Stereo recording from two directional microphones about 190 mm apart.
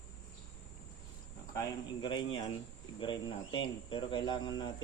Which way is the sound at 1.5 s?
20° left (ahead or behind).